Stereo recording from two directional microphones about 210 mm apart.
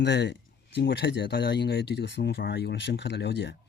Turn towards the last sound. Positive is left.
turn(degrees=60)  # may be behind; listen again after turning